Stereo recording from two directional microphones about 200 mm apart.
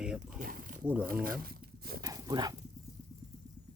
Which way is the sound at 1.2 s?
45° right (ahead or behind).